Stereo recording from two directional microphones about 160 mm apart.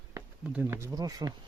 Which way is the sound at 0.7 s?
20° right (ahead or behind).